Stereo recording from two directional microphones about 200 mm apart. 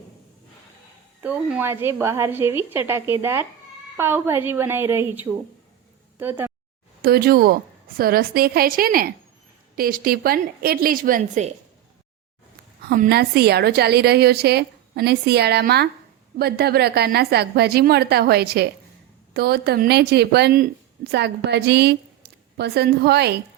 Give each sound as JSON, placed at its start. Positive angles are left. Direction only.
{"t": 1.2, "sound": "a woman's voice", "side_deg": -10}
{"t": 7.0, "sound": "a woman's voice", "side_deg": -50}
{"t": 12.9, "sound": "a woman's voice", "side_deg": -50}